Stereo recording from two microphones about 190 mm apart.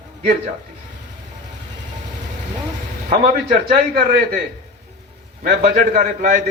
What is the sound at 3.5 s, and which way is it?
Speech, 45° right (ahead or behind).